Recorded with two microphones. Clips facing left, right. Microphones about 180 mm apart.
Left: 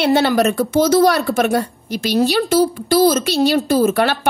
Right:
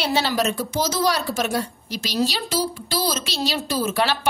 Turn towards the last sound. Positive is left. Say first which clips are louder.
# left 7 dB
turn(degrees=55)  # may be behind; listen again after turning